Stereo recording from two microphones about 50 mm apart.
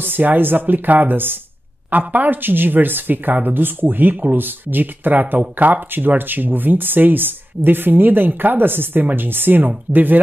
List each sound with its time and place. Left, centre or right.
0.0 s speech: right